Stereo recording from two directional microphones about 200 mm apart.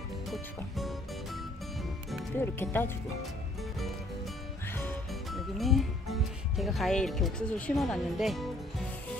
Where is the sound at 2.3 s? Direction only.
10° left (ahead or behind).